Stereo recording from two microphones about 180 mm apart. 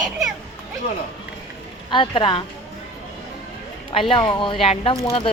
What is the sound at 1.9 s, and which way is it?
Speech, 25° left (ahead or behind).